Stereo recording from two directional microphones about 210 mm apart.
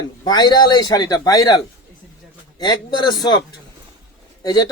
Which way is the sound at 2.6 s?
20° left (ahead or behind).